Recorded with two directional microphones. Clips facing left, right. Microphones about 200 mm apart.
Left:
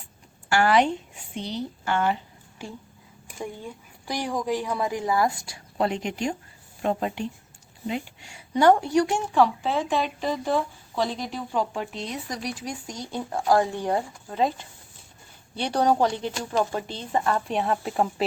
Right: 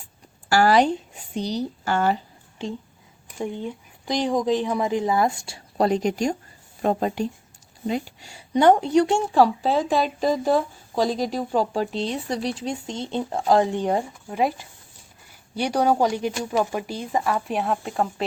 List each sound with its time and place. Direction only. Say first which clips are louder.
0.4 s speech: right 3 dB; 35° right (ahead or behind)
3.3 s a woman's voice: right 6 dB; 20° right (ahead or behind); by 8.4 s 35° right (ahead or behind)
8.5 s a woman's voice: right 2 dB; 20° right (ahead or behind); by 18.3 s 5° left (ahead or behind)